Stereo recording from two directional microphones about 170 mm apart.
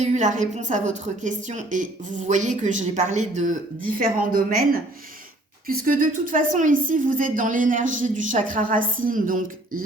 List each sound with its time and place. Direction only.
0.0 s a woman's voice: 45° right (ahead or behind)